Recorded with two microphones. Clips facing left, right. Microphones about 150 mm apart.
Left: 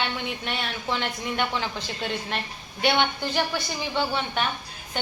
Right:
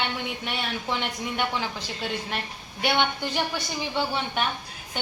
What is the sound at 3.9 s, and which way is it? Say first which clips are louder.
Speech: left 1 dB; 10° right (ahead or behind).